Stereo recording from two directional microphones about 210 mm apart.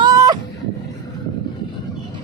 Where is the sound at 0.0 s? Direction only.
15° right (ahead or behind).